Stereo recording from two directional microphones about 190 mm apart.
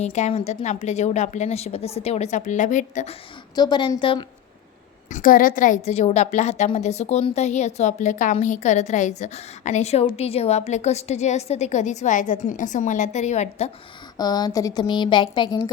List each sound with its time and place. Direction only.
0.0 s a woman's voice: 35° left (ahead or behind)
3.5 s speech: 20° left (ahead or behind)
5.0 s a woman's voice: 45° left (ahead or behind)
14.2 s speech: 20° left (ahead or behind)